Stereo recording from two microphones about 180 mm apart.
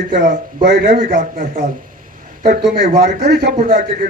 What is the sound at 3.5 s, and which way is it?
Speech, 50° right (ahead or behind).